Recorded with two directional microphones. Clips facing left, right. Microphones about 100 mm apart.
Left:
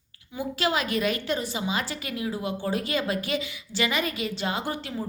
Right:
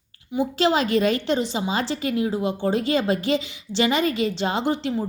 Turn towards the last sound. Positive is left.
turn(degrees=-25)  # may be behind; listen again after turning